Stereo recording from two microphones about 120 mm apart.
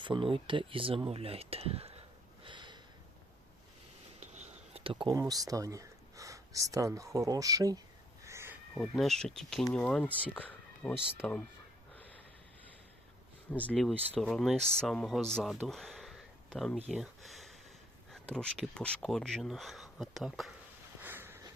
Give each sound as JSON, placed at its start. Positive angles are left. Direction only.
{"t": 0.0, "sound": "speech", "side_deg": -45}
{"t": 2.4, "sound": "sniff", "side_deg": -40}
{"t": 4.2, "sound": "a sound", "side_deg": -70}
{"t": 4.8, "sound": "speech", "side_deg": -45}
{"t": 5.1, "sound": "speech", "side_deg": -30}
{"t": 8.2, "sound": "crow", "side_deg": -25}
{"t": 8.7, "sound": "speech", "side_deg": 0}
{"t": 10.3, "sound": "a sound", "side_deg": 15}
{"t": 11.2, "sound": "speech", "side_deg": 15}
{"t": 13.5, "sound": "speech", "side_deg": 10}
{"t": 15.6, "sound": "a sound", "side_deg": 0}
{"t": 18.1, "sound": "speech", "side_deg": 5}
{"t": 21.0, "sound": "a sound", "side_deg": -15}